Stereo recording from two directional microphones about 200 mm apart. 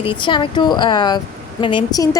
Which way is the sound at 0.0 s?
25° left (ahead or behind).